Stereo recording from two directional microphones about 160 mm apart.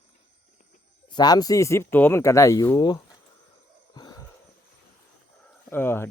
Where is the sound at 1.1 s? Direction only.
25° left (ahead or behind).